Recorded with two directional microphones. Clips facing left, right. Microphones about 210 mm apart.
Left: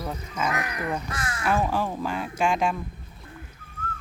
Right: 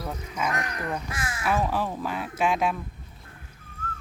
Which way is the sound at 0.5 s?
10° left (ahead or behind).